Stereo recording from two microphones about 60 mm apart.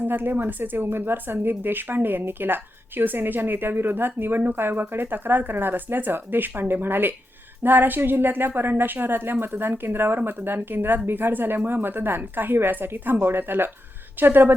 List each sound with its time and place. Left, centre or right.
0.0 s speech: right